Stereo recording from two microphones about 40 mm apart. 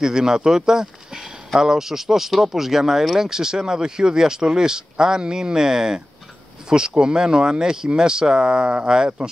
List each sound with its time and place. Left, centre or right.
0.0 s speech: centre
7.0 s speech: centre